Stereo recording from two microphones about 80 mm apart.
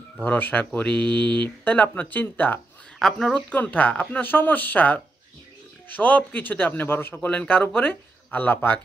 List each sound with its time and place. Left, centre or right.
0.2 s speech: centre
0.7 s mantra: centre
1.6 s speech: centre
3.0 s speech: centre